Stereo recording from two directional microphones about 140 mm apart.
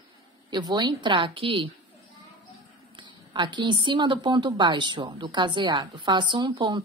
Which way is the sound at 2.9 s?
35° right (ahead or behind).